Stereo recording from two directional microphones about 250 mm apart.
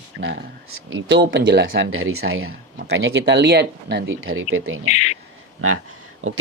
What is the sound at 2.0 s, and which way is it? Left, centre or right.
Speech, right.